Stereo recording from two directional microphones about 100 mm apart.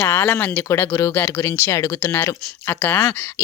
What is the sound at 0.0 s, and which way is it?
Speech, 25° left (ahead or behind).